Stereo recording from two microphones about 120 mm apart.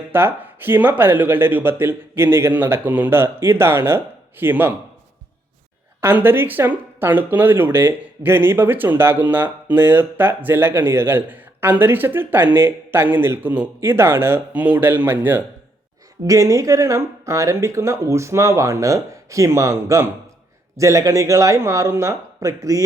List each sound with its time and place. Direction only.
0.1 s speech: 15° right (ahead or behind)
6.0 s speech: 15° right (ahead or behind)